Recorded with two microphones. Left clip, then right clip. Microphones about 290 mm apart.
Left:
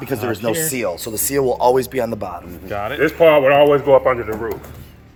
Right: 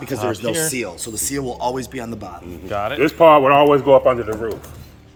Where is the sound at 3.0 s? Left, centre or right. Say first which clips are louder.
Right 1 dB; right.